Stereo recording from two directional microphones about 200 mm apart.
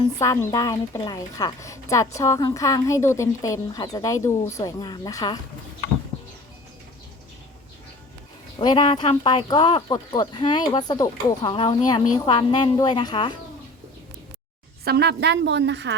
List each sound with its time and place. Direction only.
0.2 s a woman's voice: 15° left (ahead or behind)
8.5 s speech: 25° left (ahead or behind)
14.8 s a woman's voice: 55° right (ahead or behind)